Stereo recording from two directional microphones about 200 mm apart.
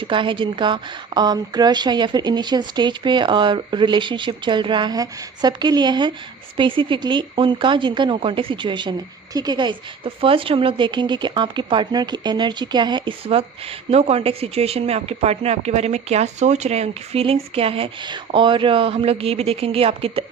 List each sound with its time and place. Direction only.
0.0 s speech: 25° right (ahead or behind)